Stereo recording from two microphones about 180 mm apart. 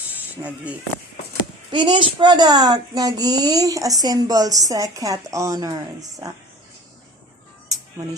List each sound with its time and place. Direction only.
0.4 s speech: 5° right (ahead or behind)
1.7 s speech: 25° right (ahead or behind)